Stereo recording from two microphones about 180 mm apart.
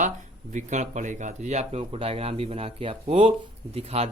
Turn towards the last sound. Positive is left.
turn(degrees=-35)  # may be behind; listen again after turning